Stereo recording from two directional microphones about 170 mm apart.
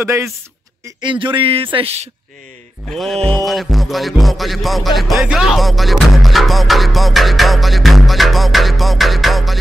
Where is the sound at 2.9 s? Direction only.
Centre (ahead or behind).